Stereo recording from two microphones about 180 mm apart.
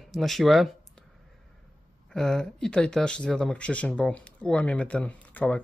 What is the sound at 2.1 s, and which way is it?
Speech, 5° left (ahead or behind).